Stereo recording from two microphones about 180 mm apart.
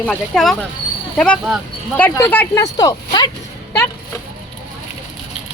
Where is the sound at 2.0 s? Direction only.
15° left (ahead or behind).